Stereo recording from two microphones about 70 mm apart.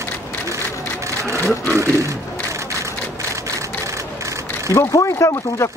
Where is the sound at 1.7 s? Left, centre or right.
Right.